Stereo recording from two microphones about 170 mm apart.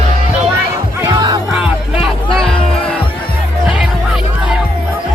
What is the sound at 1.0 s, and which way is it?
Music, 25° right (ahead or behind).